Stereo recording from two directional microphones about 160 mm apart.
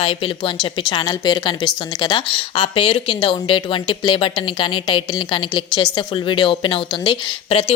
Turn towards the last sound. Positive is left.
turn(degrees=35)  # may be behind; listen again after turning